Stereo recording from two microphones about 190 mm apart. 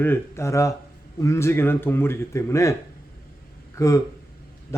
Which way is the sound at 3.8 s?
15° left (ahead or behind).